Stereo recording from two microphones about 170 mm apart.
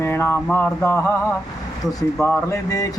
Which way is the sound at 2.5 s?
20° left (ahead or behind).